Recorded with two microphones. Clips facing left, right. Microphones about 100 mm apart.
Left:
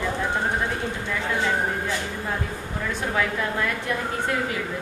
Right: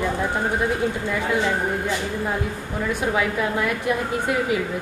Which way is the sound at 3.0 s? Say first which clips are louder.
Right 2 dB; 10° right (ahead or behind).